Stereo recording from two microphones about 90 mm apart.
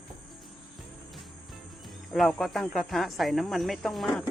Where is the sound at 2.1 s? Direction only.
5° left (ahead or behind).